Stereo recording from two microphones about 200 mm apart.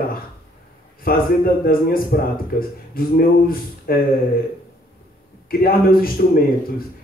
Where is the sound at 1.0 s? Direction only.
45° left (ahead or behind).